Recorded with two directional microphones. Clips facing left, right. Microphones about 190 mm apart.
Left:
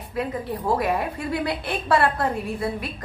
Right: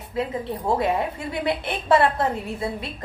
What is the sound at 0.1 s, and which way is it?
A woman's voice, 25° right (ahead or behind).